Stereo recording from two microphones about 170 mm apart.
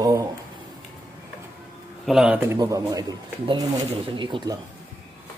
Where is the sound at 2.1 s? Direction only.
Centre (ahead or behind).